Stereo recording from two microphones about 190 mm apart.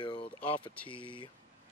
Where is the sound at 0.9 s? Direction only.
25° left (ahead or behind).